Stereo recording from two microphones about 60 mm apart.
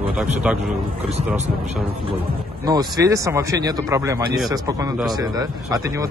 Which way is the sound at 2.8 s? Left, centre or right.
Right.